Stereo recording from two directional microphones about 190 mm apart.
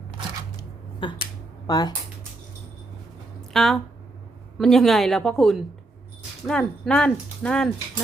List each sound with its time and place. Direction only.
1.0 s speech: 25° left (ahead or behind)
3.5 s speech: centre (ahead or behind)